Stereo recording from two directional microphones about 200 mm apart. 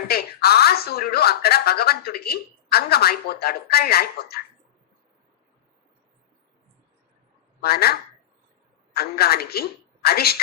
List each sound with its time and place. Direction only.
0.1 s speech: 50° left (ahead or behind)
7.6 s a woman's voice: 50° left (ahead or behind)